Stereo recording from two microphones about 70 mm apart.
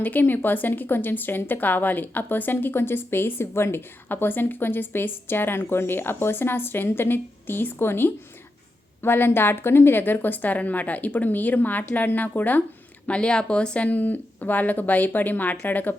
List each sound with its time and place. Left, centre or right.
0.0 s a woman's voice: left